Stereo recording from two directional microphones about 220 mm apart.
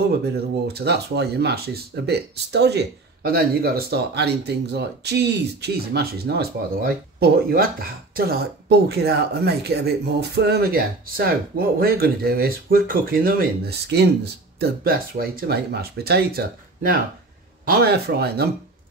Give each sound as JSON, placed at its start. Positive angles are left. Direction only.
{"t": 0.7, "sound": "speech", "side_deg": -50}